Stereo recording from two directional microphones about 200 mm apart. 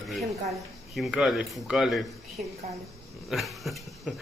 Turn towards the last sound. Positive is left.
turn(degrees=0)  # may be behind; listen again after turning